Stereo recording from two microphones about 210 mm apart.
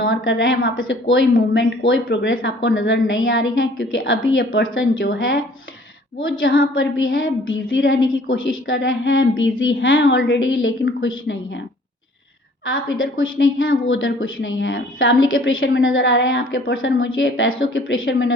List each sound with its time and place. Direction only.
0.1 s a woman's voice: 65° left (ahead or behind)
12.6 s a woman's voice: 65° left (ahead or behind)